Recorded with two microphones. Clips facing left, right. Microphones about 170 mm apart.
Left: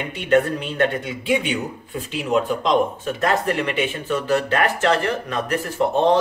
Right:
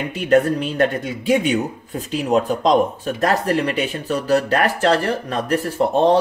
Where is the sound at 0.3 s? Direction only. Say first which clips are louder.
Right 2 dB; 40° right (ahead or behind).